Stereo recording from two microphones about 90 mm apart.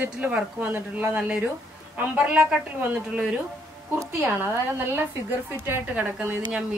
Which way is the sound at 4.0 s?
25° right (ahead or behind).